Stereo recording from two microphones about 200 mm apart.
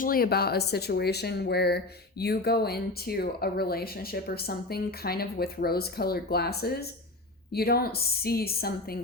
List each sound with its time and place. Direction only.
0.0 s speech: 50° left (ahead or behind)